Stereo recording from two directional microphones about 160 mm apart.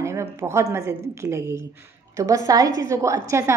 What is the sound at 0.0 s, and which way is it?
A woman's voice, 15° right (ahead or behind).